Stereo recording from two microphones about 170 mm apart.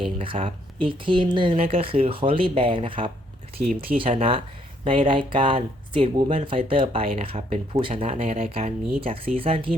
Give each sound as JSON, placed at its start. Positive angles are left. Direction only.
{"t": 0.0, "sound": "speech", "side_deg": -30}